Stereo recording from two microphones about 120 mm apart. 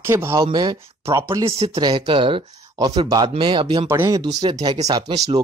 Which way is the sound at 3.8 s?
20° right (ahead or behind).